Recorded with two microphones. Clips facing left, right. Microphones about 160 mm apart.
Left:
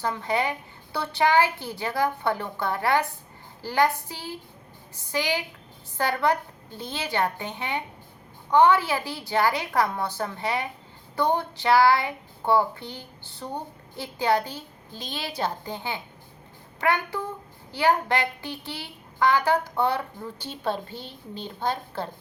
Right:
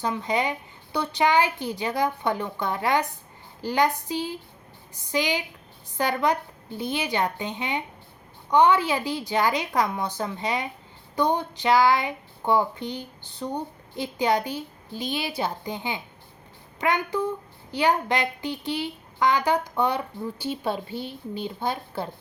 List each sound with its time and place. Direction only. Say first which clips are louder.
0.0 s speech: right 1 dB; 15° right (ahead or behind)